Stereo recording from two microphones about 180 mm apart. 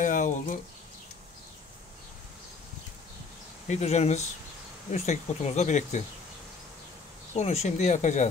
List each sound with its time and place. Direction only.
0.0 s a sound: 45° left (ahead or behind)
3.6 s speech: 40° left (ahead or behind)
7.3 s speech: 35° left (ahead or behind)